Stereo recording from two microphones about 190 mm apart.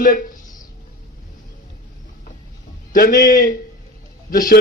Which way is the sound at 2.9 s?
50° left (ahead or behind).